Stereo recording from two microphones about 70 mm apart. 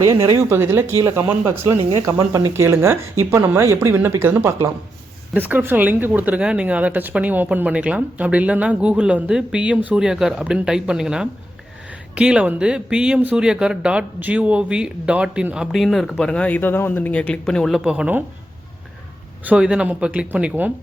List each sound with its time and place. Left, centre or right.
0.0 s speech: right
2.0 s speech: right
2.5 s speech: right
5.3 s speech: right
10.0 s speech: centre
15.7 s speech: centre
17.4 s speech: centre
17.7 s speech: centre
19.5 s speech: centre